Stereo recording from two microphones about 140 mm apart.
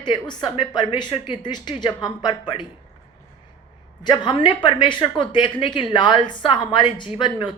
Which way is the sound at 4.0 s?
30° left (ahead or behind).